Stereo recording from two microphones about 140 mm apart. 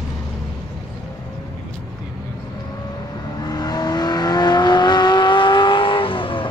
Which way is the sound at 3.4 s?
30° left (ahead or behind).